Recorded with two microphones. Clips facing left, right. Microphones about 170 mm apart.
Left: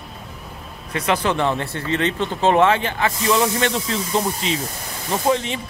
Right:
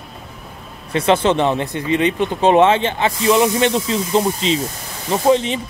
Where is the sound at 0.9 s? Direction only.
25° right (ahead or behind).